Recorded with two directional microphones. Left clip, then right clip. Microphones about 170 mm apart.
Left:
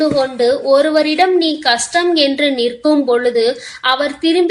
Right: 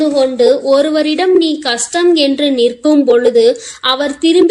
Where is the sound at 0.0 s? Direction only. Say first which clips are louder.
Right 3 dB; 35° right (ahead or behind).